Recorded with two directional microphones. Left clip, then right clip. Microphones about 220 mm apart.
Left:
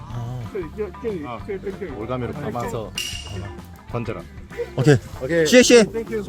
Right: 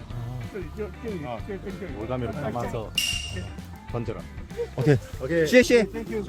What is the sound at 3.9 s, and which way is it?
Speech, 20° left (ahead or behind).